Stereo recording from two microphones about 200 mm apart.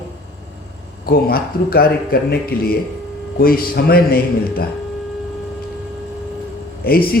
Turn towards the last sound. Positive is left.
turn(degrees=50)  # may be behind; listen again after turning